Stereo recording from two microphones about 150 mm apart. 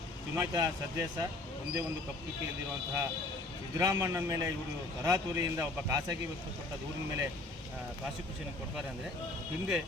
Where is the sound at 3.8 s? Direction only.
25° right (ahead or behind).